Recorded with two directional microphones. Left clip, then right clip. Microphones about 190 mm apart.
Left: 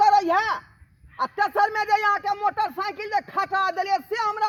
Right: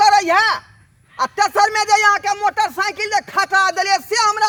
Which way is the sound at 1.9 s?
30° right (ahead or behind).